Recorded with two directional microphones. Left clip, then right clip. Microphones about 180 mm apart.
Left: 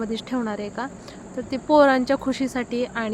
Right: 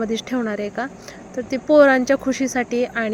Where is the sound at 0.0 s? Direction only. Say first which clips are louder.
Right 4 dB; 15° right (ahead or behind).